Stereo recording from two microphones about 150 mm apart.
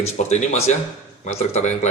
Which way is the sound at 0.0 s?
50° left (ahead or behind).